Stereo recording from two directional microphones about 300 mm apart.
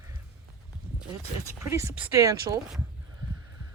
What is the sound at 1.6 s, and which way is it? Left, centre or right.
Speech, centre.